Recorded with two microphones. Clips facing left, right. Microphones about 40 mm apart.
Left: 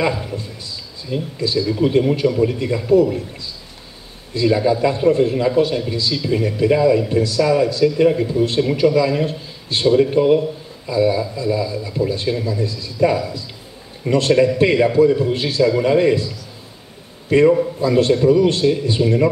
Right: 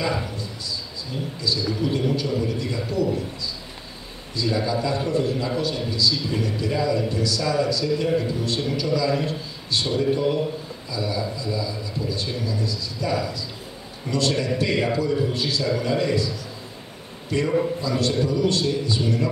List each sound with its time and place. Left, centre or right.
0.4 s speech: left
4.3 s speech: left
17.3 s speech: left